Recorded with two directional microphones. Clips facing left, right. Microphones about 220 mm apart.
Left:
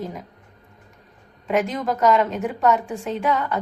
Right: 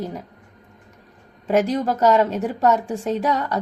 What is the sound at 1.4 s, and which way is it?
A woman's voice, 35° right (ahead or behind).